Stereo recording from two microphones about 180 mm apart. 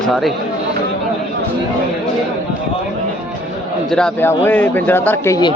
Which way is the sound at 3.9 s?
5° left (ahead or behind).